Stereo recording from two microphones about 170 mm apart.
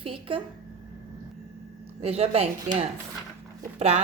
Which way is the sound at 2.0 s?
35° right (ahead or behind).